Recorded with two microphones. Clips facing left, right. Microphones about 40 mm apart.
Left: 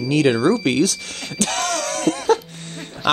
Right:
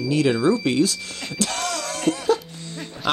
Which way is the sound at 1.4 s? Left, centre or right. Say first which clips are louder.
Left 4 dB; left.